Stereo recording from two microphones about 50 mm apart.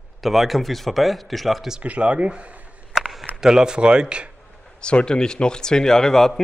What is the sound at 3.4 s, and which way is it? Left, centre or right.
Speech, centre.